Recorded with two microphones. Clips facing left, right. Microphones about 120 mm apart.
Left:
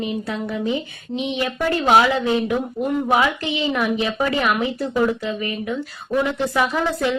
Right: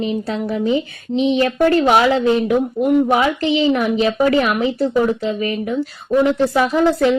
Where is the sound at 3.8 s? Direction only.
30° right (ahead or behind).